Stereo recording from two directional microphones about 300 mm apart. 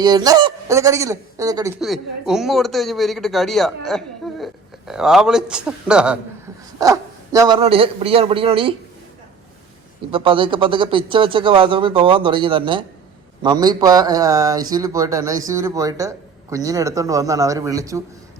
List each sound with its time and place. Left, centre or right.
0.0 s a man's voice: centre
10.1 s speech: centre